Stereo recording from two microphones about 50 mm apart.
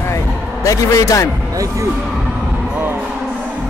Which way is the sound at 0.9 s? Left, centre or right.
Left.